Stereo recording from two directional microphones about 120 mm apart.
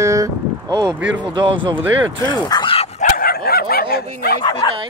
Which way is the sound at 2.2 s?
35° left (ahead or behind).